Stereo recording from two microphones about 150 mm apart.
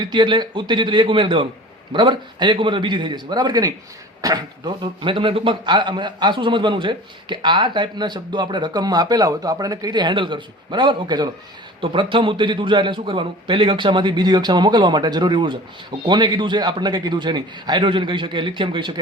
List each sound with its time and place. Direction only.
0.0 s a man's voice: 30° right (ahead or behind)